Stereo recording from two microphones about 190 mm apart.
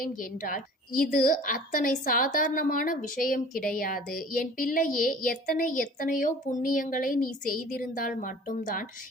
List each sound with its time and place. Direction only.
0.0 s a woman's voice: 45° left (ahead or behind)